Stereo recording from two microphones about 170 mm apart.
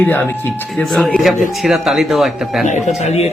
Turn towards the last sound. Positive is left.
turn(degrees=40)  # may be behind; listen again after turning